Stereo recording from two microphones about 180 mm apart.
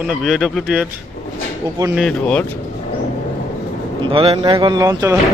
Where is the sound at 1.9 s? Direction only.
5° left (ahead or behind).